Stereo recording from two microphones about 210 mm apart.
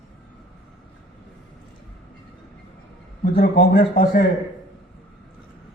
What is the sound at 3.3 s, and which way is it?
Speech, 45° left (ahead or behind).